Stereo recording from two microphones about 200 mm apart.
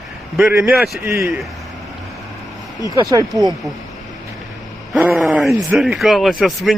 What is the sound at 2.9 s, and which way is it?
Speech, 15° right (ahead or behind).